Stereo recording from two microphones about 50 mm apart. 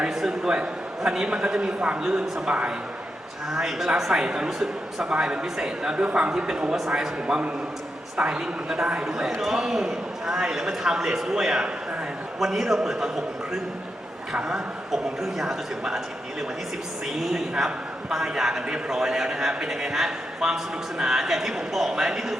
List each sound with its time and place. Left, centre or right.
0.0 s a man's voice: centre
3.5 s a man's voice: centre
14.3 s a man's voice: centre
17.1 s a woman's voice: centre